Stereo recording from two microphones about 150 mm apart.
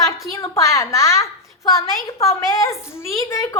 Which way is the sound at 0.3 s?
20° left (ahead or behind).